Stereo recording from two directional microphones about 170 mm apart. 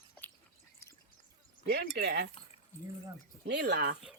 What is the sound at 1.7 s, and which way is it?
Speech, 80° right.